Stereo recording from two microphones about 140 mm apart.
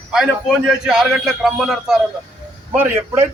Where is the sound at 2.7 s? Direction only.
15° right (ahead or behind).